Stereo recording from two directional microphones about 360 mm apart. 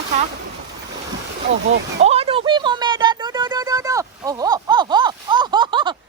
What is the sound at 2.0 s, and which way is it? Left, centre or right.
Music, centre.